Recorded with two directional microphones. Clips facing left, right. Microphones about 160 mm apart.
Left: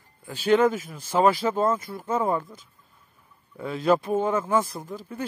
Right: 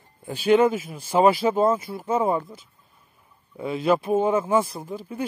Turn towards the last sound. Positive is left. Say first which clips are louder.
# right 2 dB
turn(degrees=-10)  # may be behind; listen again after turning